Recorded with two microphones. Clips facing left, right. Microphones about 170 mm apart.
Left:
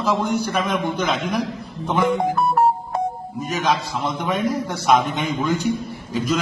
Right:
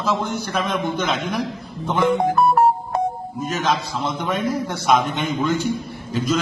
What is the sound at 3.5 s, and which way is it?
A man's voice, centre (ahead or behind).